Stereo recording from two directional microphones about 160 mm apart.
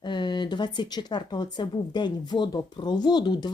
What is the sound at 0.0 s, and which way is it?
Speech, 30° left (ahead or behind).